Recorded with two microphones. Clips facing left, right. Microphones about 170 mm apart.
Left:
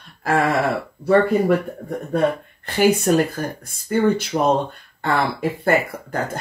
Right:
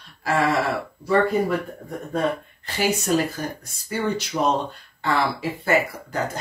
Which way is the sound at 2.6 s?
55° left (ahead or behind).